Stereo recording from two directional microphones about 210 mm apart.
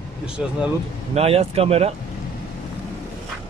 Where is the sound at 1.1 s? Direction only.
30° right (ahead or behind).